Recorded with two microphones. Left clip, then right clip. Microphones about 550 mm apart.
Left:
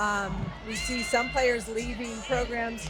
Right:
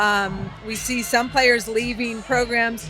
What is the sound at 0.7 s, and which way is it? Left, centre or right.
Speech, right.